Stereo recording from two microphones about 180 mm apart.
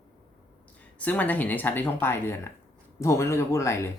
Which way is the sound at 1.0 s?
10° left (ahead or behind).